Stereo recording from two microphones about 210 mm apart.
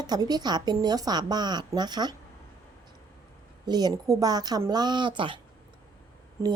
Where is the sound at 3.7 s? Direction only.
20° right (ahead or behind).